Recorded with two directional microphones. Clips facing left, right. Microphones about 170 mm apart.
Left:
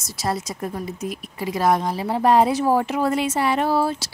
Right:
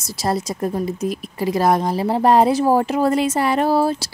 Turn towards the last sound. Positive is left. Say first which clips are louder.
# right 3 dB
turn(degrees=-40)  # may be behind; listen again after turning